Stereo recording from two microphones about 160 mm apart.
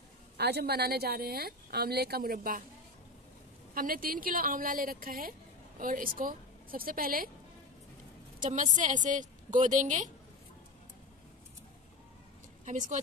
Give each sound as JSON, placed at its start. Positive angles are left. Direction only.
{"t": 0.4, "sound": "a woman's voice", "side_deg": -90}
{"t": 3.7, "sound": "a woman's voice", "side_deg": -65}
{"t": 8.4, "sound": "a woman's voice", "side_deg": -50}
{"t": 12.6, "sound": "a woman's voice", "side_deg": -50}